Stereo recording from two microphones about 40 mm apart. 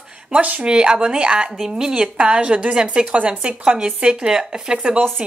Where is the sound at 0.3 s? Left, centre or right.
Right.